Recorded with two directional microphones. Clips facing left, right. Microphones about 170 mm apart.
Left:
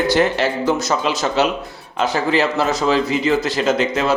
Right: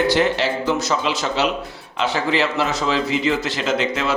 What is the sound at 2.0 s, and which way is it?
A man's voice, 45° left (ahead or behind).